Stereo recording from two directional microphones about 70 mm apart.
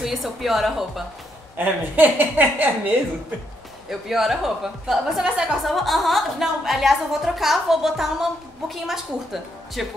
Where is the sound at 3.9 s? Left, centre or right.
Centre.